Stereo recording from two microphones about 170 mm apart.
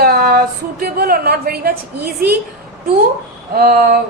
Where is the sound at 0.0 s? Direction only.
60° right (ahead or behind).